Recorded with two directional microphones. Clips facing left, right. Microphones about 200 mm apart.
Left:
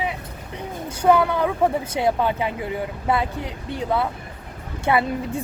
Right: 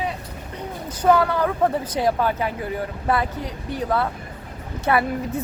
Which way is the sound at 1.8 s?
25° left (ahead or behind).